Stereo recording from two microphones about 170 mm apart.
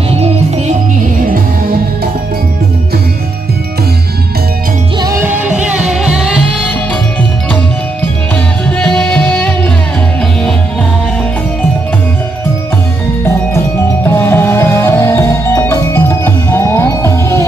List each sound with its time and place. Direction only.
0.1 s music: 35° right (ahead or behind)
1.1 s music: 55° right (ahead or behind)
5.0 s music: 15° right (ahead or behind)
8.6 s music: 5° left (ahead or behind)
14.0 s music: 15° left (ahead or behind)